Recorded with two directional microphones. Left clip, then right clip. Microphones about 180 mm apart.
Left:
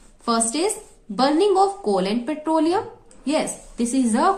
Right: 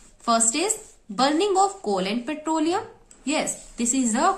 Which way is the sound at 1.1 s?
15° right (ahead or behind).